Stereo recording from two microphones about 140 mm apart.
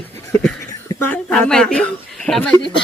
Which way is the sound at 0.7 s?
25° left (ahead or behind).